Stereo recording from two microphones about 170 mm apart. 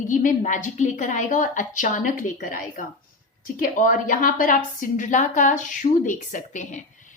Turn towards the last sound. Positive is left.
turn(degrees=45)  # may be behind; listen again after turning